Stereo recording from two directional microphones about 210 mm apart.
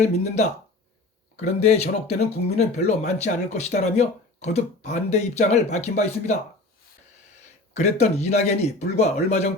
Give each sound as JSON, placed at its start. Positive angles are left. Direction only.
{"t": 0.0, "sound": "speech", "side_deg": 30}
{"t": 7.7, "sound": "speech", "side_deg": 35}